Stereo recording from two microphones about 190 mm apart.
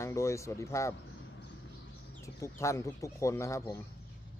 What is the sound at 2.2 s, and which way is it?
A man's voice, 15° left (ahead or behind).